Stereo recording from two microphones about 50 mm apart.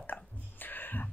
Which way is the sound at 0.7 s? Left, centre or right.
Left.